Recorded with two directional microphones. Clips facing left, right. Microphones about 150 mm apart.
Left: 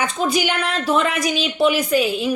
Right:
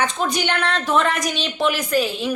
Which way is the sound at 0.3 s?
5° left (ahead or behind).